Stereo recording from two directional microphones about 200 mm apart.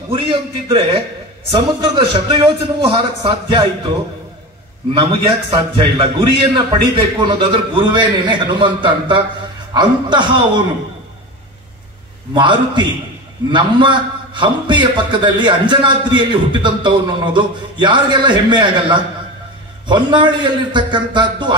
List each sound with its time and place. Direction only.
0.1 s a man's voice: 25° right (ahead or behind)
4.9 s a man's voice: 25° right (ahead or behind)
12.4 s a man's voice: 25° right (ahead or behind)